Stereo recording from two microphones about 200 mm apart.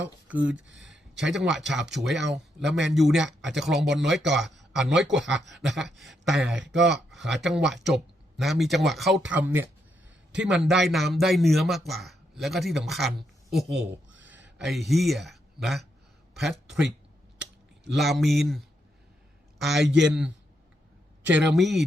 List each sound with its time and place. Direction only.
0.3 s a man's voice: 5° right (ahead or behind)
13.7 s speech: 55° right (ahead or behind)
14.6 s a man's voice: centre (ahead or behind)